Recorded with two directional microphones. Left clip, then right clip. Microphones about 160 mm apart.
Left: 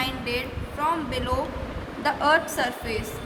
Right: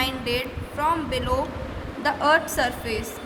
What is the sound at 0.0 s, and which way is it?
Speech, 35° right (ahead or behind).